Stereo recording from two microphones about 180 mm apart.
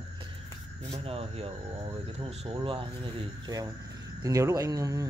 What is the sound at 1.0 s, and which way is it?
Speech, 30° right (ahead or behind).